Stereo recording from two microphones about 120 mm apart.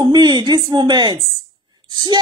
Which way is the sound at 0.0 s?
40° right (ahead or behind).